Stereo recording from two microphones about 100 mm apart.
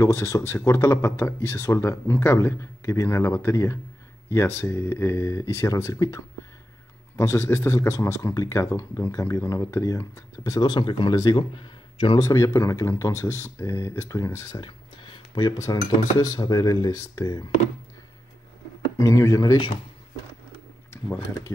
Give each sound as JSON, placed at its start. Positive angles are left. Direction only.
{"t": 0.0, "sound": "speech", "side_deg": 30}
{"t": 12.2, "sound": "speech", "side_deg": 35}
{"t": 14.5, "sound": "a sound", "side_deg": 50}
{"t": 15.5, "sound": "speech", "side_deg": 35}
{"t": 18.9, "sound": "speech", "side_deg": 35}